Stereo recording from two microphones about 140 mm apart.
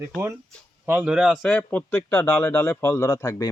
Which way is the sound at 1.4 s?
10° left (ahead or behind).